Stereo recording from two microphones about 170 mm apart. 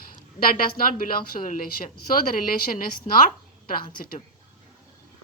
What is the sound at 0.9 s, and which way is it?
Speech, 55° left (ahead or behind).